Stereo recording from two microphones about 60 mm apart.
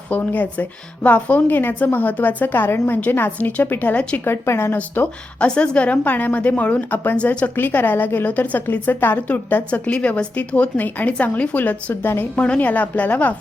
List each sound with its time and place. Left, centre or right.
0.1 s a woman's voice: left
4.4 s speech: left
5.4 s a woman's voice: centre
7.5 s a woman's voice: left